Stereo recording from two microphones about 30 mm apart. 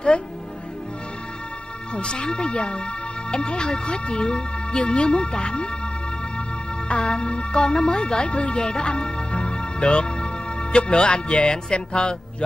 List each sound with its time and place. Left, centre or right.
2.0 s speech: left
6.9 s speech: left
8.4 s music: left
10.8 s speech: left